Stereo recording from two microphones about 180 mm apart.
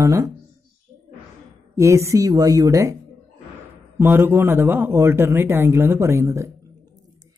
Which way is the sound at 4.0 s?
15° right (ahead or behind).